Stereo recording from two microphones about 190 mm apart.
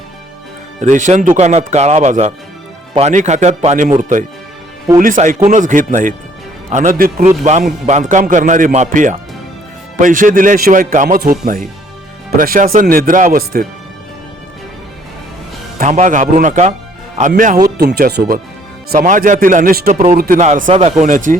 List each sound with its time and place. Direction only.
0.8 s speech: 40° right (ahead or behind)
15.8 s speech: 40° right (ahead or behind)
17.7 s speech: 55° right (ahead or behind)